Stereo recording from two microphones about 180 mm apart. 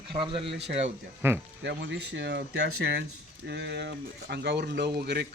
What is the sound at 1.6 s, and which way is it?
Speech, 70° right (ahead or behind).